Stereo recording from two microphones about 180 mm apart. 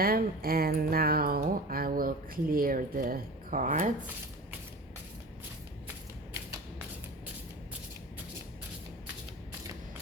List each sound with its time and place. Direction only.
0.0 s speech: 55° right (ahead or behind)